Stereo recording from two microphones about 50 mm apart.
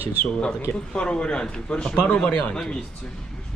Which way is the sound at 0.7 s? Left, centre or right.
Centre.